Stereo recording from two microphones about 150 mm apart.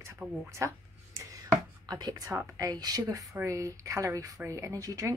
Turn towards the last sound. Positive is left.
turn(degrees=-20)  # may be behind; listen again after turning